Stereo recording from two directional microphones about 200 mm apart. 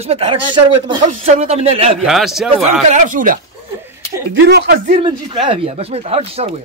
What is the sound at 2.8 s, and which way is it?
Speech, 40° right (ahead or behind).